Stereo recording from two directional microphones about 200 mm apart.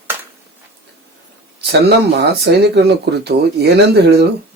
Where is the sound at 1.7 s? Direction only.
55° right (ahead or behind).